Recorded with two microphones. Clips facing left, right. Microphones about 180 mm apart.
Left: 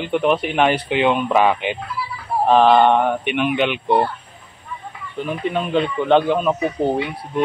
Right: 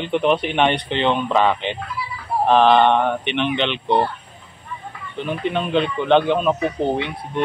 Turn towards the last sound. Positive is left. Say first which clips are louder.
# left 1 dB
turn(degrees=5)  # may be behind; listen again after turning